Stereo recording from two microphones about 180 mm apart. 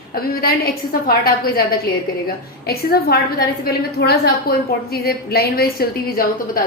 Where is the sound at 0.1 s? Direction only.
55° left (ahead or behind).